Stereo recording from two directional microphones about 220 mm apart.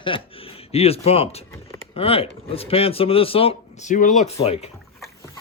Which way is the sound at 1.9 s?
25° left (ahead or behind).